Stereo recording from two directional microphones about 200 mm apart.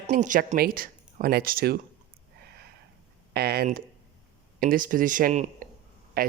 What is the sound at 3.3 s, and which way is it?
Speech, 55° right (ahead or behind).